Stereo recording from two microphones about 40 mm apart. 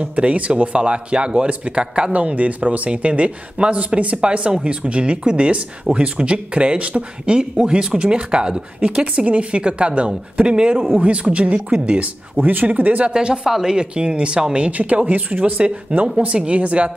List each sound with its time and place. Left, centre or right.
0.0 s speech: right
2.1 s speech: right
12.4 s speech: right
13.1 s speech: right
16.3 s speech: right